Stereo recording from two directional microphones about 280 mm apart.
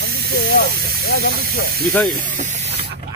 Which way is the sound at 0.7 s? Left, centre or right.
Right.